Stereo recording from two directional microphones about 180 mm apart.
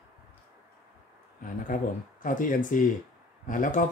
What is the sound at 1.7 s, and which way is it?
Speech, 50° left (ahead or behind).